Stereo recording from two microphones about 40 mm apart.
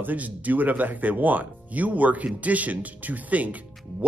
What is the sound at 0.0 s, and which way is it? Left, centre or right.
Speech, right.